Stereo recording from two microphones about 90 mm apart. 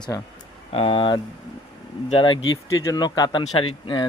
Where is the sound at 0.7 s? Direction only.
65° left (ahead or behind).